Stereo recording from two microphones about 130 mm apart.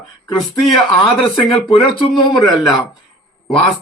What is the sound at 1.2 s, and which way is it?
Speech, 45° left (ahead or behind).